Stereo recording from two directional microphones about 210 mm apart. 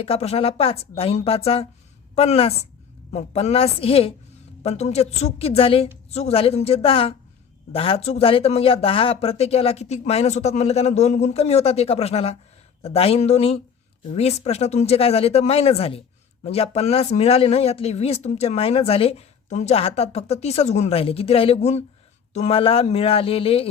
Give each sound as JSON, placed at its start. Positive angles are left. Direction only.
{"t": 0.0, "sound": "speech", "side_deg": 30}